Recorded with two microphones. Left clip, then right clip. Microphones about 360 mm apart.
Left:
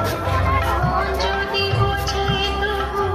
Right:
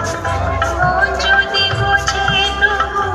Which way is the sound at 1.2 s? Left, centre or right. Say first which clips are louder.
Right 8 dB; right.